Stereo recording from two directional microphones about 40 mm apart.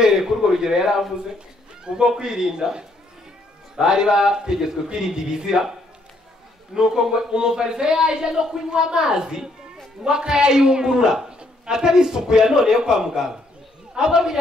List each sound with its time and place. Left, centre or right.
0.0 s a man's voice: centre
6.7 s a man's voice: centre